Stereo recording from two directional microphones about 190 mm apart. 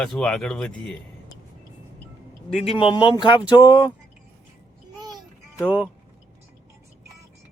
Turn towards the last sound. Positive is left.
turn(degrees=-5)  # may be behind; listen again after turning